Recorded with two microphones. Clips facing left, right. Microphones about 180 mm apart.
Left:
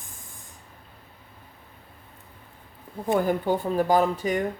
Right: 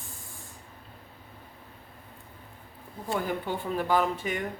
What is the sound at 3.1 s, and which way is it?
Speech, 40° left (ahead or behind).